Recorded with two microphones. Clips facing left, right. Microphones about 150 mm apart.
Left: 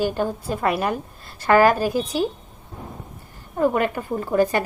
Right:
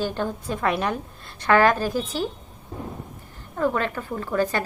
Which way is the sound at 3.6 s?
15° left (ahead or behind).